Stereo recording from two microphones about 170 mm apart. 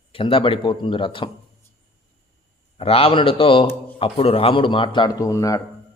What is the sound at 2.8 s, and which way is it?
A man's voice, 35° left (ahead or behind).